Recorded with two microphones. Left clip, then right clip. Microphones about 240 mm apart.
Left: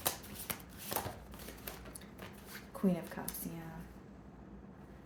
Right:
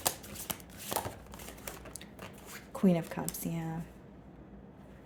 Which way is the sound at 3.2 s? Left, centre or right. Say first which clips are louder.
Right 6 dB; right.